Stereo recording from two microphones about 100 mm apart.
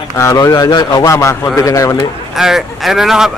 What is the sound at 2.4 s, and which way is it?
Speech, 5° right (ahead or behind).